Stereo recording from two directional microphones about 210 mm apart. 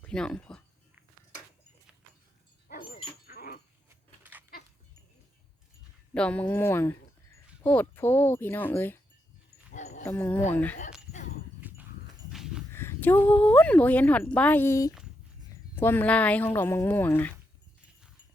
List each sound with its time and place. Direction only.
0.0 s speech: 5° left (ahead or behind)
3.2 s dog: 45° left (ahead or behind)
3.8 s keys jangling: 10° right (ahead or behind)
6.1 s speech: 5° left (ahead or behind)
9.7 s a sound: 35° left (ahead or behind)
10.0 s speech: 10° left (ahead or behind)
11.6 s dog: 10° right (ahead or behind)
12.3 s a sound: centre (ahead or behind)
12.7 s a sound: 10° left (ahead or behind)
13.2 s speech: 10° left (ahead or behind)